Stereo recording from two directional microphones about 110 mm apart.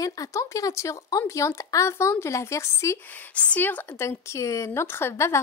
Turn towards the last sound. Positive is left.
turn(degrees=25)  # may be behind; listen again after turning